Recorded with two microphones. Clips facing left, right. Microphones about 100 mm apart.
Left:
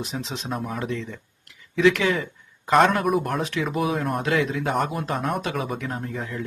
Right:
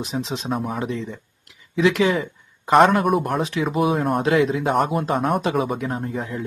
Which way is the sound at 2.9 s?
Centre (ahead or behind).